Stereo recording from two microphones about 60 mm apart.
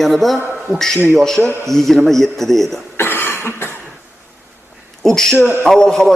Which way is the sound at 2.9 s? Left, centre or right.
Left.